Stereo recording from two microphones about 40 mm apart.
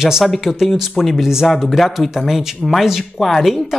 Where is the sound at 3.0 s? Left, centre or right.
Centre.